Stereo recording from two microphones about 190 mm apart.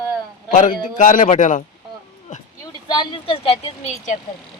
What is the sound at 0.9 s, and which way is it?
Speech, 45° left (ahead or behind).